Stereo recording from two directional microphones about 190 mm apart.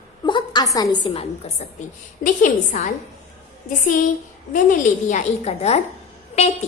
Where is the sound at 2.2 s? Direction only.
45° left (ahead or behind).